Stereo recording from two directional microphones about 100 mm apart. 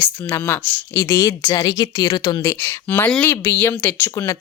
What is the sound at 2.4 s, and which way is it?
A woman's voice, 25° left (ahead or behind).